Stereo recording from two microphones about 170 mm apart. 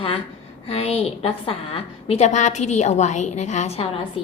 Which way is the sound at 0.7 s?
35° left (ahead or behind).